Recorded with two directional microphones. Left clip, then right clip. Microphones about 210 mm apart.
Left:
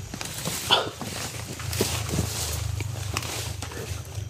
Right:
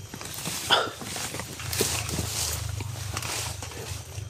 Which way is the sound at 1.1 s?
Centre (ahead or behind).